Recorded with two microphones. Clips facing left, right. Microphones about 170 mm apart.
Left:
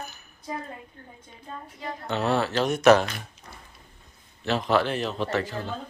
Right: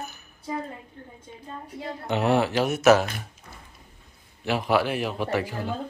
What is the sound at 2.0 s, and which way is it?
Speech, 15° right (ahead or behind).